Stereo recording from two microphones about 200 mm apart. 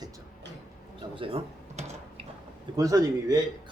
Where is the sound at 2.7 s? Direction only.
15° right (ahead or behind).